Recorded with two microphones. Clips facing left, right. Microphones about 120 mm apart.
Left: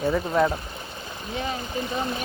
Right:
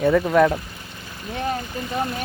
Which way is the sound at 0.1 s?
75° right (ahead or behind).